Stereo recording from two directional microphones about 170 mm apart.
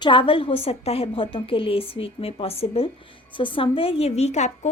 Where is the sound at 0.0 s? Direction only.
30° left (ahead or behind).